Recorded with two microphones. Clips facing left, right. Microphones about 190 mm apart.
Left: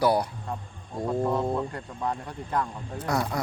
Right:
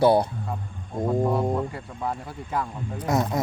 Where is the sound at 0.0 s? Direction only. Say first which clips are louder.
Right 5 dB; 25° right (ahead or behind).